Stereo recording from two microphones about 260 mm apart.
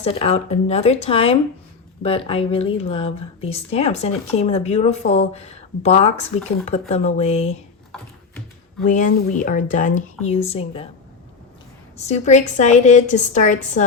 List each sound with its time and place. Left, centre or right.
0.0 s speech: left
8.8 s speech: left
11.9 s speech: left